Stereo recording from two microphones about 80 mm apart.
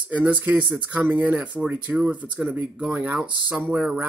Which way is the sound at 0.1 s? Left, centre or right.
Centre.